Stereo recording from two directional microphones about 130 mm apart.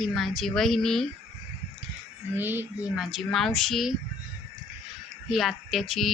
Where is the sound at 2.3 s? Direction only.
15° right (ahead or behind).